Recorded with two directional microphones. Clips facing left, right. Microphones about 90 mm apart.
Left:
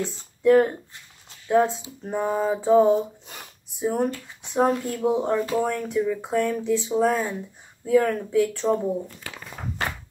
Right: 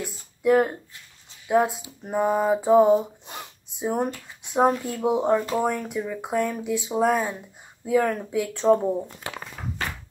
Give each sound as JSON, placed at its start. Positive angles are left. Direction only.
{"t": 0.0, "sound": "speech", "side_deg": -10}